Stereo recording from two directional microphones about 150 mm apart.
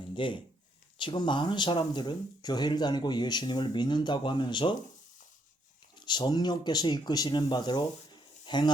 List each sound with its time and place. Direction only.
0.1 s speech: 35° left (ahead or behind)
6.0 s speech: 30° left (ahead or behind)